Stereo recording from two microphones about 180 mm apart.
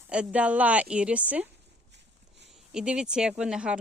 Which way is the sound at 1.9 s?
75° right (ahead or behind).